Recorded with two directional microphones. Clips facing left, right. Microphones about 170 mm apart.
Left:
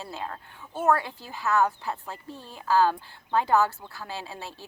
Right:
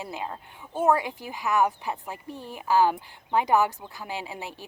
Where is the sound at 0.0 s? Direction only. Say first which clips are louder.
Right 2 dB; 15° right (ahead or behind).